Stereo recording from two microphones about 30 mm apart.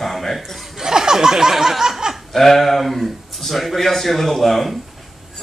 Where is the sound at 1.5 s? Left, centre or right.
Centre.